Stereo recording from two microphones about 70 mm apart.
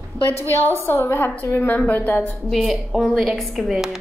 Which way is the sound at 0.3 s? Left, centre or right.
Left.